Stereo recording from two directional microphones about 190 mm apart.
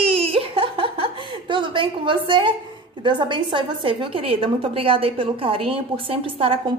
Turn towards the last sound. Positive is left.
turn(degrees=-30)  # may be behind; listen again after turning